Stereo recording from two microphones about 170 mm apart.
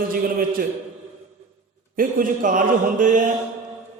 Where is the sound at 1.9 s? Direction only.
50° right (ahead or behind).